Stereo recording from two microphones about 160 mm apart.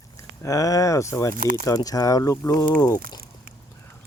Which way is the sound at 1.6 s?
25° left (ahead or behind).